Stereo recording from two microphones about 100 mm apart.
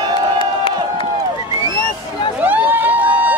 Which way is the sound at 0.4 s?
60° left (ahead or behind).